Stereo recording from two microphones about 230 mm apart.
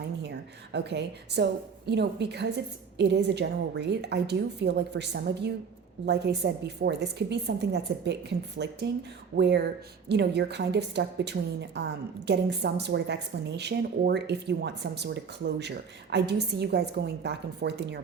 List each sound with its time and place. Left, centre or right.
0.2 s a woman's voice: right